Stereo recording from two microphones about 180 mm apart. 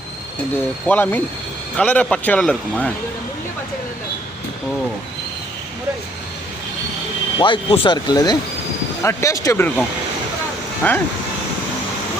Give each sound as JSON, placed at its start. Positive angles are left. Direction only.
{"t": 0.5, "sound": "speech", "side_deg": 10}
{"t": 7.3, "sound": "speech", "side_deg": 25}
{"t": 10.8, "sound": "speech", "side_deg": 10}